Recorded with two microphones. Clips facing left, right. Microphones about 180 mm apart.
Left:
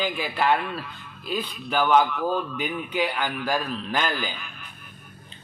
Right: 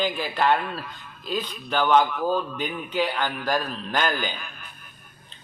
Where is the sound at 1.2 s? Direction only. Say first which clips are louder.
Even; 5° left (ahead or behind).